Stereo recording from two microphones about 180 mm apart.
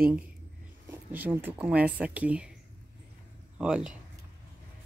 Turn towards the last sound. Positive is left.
turn(degrees=-5)  # may be behind; listen again after turning